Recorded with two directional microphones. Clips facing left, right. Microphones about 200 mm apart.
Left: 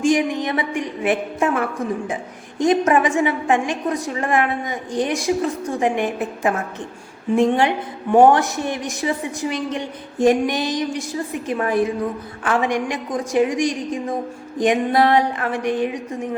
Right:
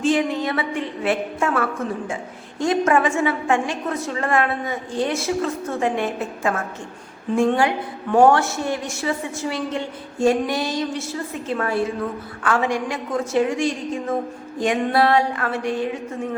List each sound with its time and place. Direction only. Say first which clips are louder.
0.0 s a woman's voice: left 2 dB; 15° left (ahead or behind)